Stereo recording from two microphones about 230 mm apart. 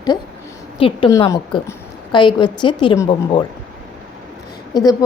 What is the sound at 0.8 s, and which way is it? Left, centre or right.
A woman's voice, left.